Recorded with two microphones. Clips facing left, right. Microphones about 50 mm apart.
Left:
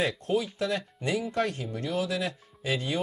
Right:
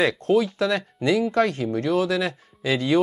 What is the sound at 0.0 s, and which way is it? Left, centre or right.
Speech, right.